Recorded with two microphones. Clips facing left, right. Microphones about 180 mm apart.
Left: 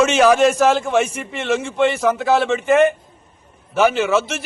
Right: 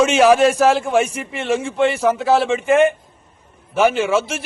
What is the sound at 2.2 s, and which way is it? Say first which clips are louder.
Speech: right 1 dB; 30° right (ahead or behind).